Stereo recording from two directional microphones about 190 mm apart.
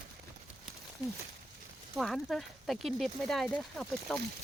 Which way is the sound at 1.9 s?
Centre (ahead or behind).